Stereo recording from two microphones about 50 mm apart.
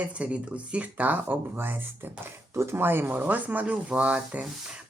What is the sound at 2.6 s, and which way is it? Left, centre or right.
Speech, right.